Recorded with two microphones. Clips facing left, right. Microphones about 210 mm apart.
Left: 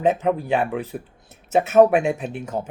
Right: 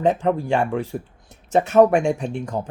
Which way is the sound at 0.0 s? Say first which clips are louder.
Even; 5° left (ahead or behind).